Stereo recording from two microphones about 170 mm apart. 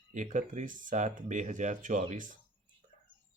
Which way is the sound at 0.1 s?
50° right (ahead or behind).